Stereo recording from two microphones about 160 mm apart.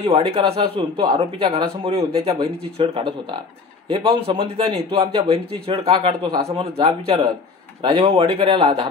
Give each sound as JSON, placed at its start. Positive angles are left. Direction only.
{"t": 0.0, "sound": "a man's voice", "side_deg": -35}